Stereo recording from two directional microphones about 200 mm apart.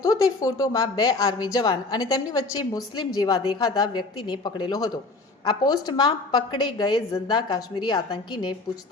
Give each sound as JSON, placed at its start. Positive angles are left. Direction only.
{"t": 0.0, "sound": "a woman's voice", "side_deg": 15}